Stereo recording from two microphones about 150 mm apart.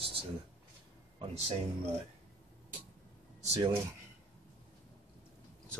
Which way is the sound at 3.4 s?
45° right (ahead or behind).